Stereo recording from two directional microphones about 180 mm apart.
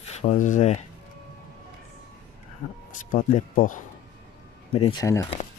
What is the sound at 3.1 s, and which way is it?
Speech, 50° left (ahead or behind).